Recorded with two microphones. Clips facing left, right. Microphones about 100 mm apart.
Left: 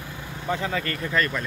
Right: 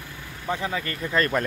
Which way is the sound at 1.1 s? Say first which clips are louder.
Right 3 dB; 40° right (ahead or behind).